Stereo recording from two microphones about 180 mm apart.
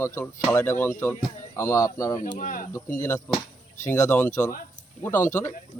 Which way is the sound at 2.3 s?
50° left (ahead or behind).